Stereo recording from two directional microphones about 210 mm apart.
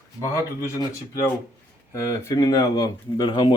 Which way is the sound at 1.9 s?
15° left (ahead or behind).